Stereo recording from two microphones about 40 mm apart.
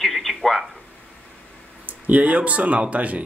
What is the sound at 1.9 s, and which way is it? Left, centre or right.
Speech, right.